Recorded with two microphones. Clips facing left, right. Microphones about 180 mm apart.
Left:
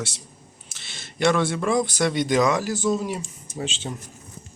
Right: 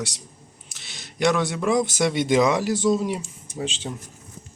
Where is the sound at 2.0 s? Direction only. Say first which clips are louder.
Right 1 dB; 20° right (ahead or behind).